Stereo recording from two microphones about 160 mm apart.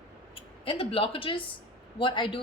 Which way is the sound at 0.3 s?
35° left (ahead or behind).